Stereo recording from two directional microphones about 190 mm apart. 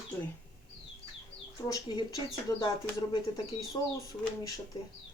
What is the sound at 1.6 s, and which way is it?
Speech, 20° left (ahead or behind).